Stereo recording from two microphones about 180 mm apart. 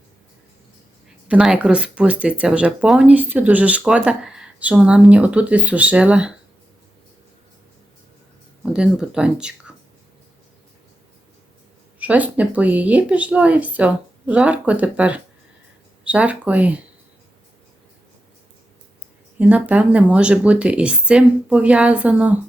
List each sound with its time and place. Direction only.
1.3 s speech: 5° right (ahead or behind)
8.6 s speech: 5° right (ahead or behind)
11.9 s speech: 10° right (ahead or behind)
19.4 s speech: 10° right (ahead or behind)